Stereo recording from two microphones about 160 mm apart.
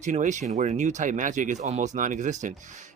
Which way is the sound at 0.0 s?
50° right (ahead or behind).